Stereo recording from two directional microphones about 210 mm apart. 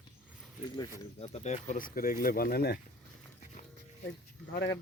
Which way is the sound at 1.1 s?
30° left (ahead or behind).